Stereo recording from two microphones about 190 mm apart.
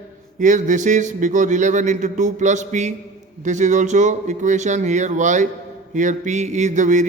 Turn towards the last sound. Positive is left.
turn(degrees=-40)  # may be behind; listen again after turning